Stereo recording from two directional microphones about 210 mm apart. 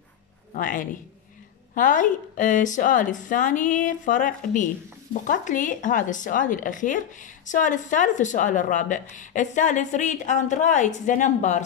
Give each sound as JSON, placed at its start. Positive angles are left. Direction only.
{"t": 0.5, "sound": "a woman's voice", "side_deg": 40}